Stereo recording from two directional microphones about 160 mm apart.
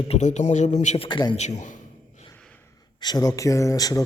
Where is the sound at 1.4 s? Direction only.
45° left (ahead or behind).